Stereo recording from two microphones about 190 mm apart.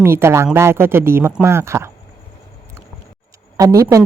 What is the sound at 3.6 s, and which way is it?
Speech, 15° right (ahead or behind).